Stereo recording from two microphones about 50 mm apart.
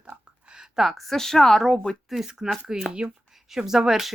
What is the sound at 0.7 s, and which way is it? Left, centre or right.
Speech, centre.